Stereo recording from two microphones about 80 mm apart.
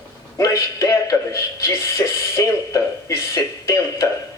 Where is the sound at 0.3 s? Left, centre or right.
Left.